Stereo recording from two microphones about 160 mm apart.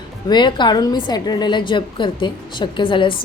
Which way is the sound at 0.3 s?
30° left (ahead or behind).